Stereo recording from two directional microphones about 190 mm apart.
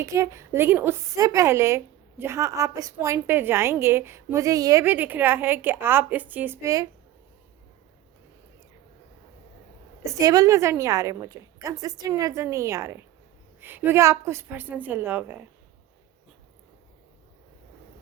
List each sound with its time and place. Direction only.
0.0 s a woman's voice: 15° right (ahead or behind)
10.0 s a woman's voice: 15° right (ahead or behind)